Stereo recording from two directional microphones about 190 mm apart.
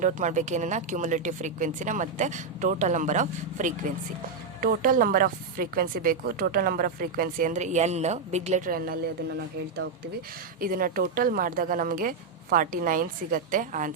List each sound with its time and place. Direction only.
0.0 s a woman's voice: 40° right (ahead or behind)
10.6 s a woman's voice: 50° right (ahead or behind)